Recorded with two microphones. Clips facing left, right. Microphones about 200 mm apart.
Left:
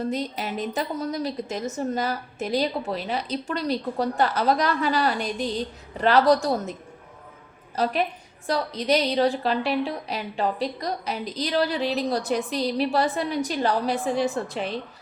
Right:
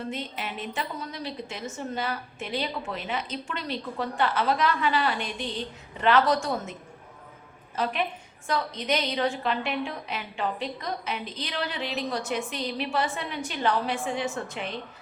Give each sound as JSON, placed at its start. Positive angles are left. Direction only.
{"t": 0.0, "sound": "a woman's voice", "side_deg": 40}
{"t": 7.8, "sound": "a woman's voice", "side_deg": 40}